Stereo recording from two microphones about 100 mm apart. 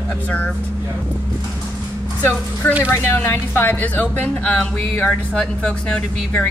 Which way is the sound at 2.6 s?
15° left (ahead or behind).